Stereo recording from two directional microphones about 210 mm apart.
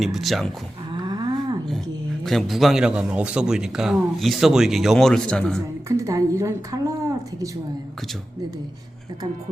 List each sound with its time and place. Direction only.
0.0 s a man's voice: centre (ahead or behind)
0.9 s cattle: 20° right (ahead or behind)
2.2 s a man's voice: centre (ahead or behind)
5.9 s speech: 15° right (ahead or behind)